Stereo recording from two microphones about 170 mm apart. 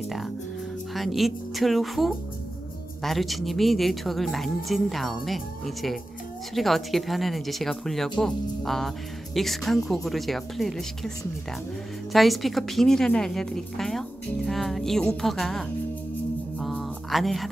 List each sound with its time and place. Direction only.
0.9 s a woman's voice: centre (ahead or behind)
12.1 s a woman's voice: centre (ahead or behind)
16.5 s a sound: 5° left (ahead or behind)